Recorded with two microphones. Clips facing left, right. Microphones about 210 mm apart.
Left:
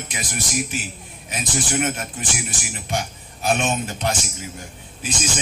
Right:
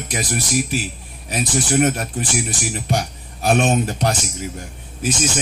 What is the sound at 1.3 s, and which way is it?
A man's voice, 40° right (ahead or behind).